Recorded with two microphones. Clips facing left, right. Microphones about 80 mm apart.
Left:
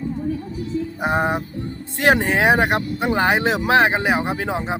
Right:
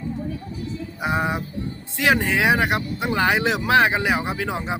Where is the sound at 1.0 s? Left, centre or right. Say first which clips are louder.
Left 2 dB; left.